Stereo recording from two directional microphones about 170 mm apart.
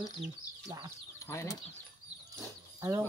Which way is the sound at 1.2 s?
15° left (ahead or behind).